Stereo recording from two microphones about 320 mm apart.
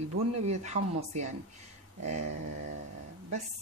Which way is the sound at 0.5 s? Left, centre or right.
Right.